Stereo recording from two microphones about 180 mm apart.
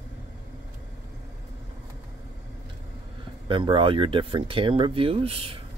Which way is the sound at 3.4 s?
30° right (ahead or behind).